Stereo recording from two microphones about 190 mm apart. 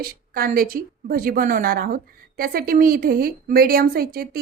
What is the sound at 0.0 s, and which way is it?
Speech, 50° right (ahead or behind).